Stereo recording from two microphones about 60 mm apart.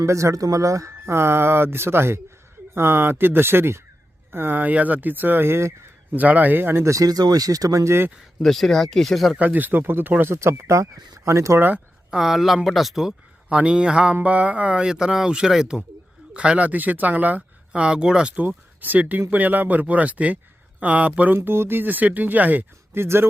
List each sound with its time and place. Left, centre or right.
0.0 s speech: right
6.1 s speech: right
6.8 s speech: right
7.9 s speech: right
8.4 s speech: centre
9.4 s speech: right
10.3 s speech: right
11.3 s speech: right
12.1 s speech: centre
13.5 s speech: centre
18.4 s speech: right
21.3 s speech: right
23.0 s speech: right